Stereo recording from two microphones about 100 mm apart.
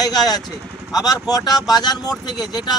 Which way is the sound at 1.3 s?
40° left (ahead or behind).